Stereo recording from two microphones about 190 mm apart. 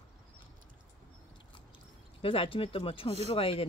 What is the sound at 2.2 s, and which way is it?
Speech, 30° left (ahead or behind).